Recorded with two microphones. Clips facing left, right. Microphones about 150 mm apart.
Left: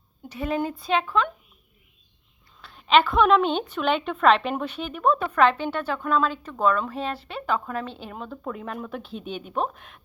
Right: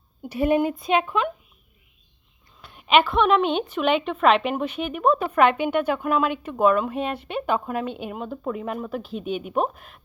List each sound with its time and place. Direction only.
0.3 s a woman's voice: 25° right (ahead or behind)
0.6 s a woman's voice: 15° right (ahead or behind)
2.6 s a woman's voice: 10° right (ahead or behind)